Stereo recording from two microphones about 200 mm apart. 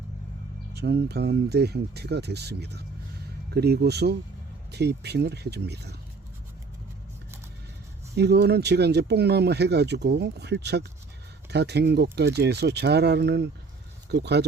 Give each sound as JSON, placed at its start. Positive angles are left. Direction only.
{"t": 0.7, "sound": "speech", "side_deg": -55}
{"t": 8.1, "sound": "speech", "side_deg": -55}